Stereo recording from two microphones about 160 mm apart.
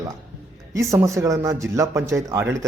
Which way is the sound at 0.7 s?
20° right (ahead or behind).